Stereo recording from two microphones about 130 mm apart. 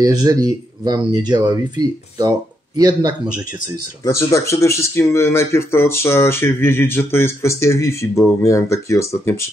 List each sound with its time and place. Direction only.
0.0 s speech: 30° right (ahead or behind)
4.0 s speech: 25° left (ahead or behind)